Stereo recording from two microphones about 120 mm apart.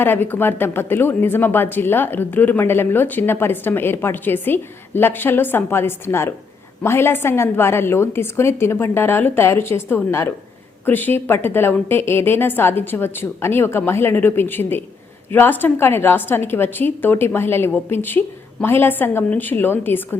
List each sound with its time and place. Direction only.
0.0 s a woman's voice: 15° left (ahead or behind)